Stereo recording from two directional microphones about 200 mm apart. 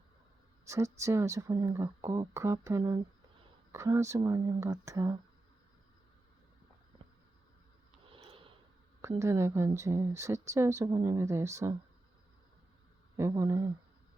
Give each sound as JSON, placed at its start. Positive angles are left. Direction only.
{"t": 0.6, "sound": "a sound", "side_deg": -15}
{"t": 0.9, "sound": "speech", "side_deg": -15}
{"t": 8.0, "sound": "gasp", "side_deg": -25}
{"t": 9.0, "sound": "speech", "side_deg": -15}
{"t": 13.1, "sound": "speech", "side_deg": -15}